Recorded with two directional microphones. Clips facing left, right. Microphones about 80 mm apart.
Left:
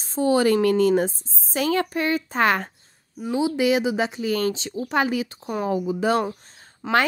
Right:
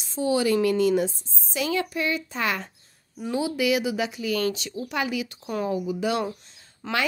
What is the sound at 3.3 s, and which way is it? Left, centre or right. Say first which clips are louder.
A woman's voice: left 3 dB; left.